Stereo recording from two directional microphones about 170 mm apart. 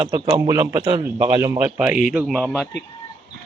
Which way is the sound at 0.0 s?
25° right (ahead or behind).